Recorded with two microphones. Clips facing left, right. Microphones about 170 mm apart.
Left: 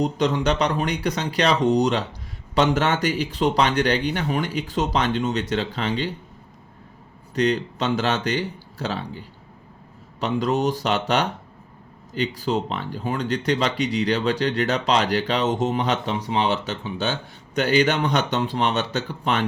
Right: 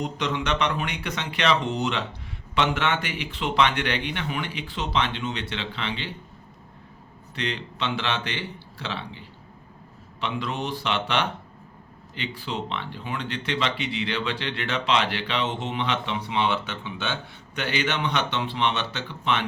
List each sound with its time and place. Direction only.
0.0 s speech: 35° left (ahead or behind)
7.3 s speech: 40° left (ahead or behind)